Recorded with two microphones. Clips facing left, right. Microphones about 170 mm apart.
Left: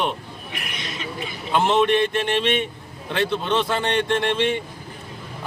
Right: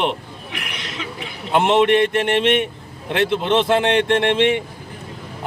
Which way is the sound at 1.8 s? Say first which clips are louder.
Right 4 dB; 65° right (ahead or behind).